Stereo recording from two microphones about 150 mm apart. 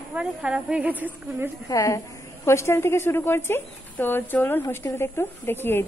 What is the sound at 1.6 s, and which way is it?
A woman's voice, 20° left (ahead or behind).